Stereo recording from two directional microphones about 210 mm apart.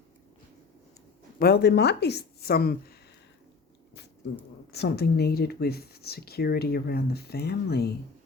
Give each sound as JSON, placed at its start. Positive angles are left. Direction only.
{"t": 1.4, "sound": "speech", "side_deg": 50}
{"t": 4.7, "sound": "speech", "side_deg": 50}